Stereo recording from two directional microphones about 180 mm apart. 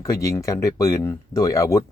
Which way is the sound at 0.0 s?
15° left (ahead or behind).